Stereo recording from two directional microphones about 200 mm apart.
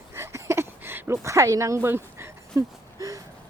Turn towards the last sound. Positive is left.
turn(degrees=-15)  # may be behind; listen again after turning